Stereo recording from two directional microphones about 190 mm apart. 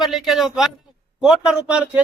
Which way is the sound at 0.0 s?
Centre (ahead or behind).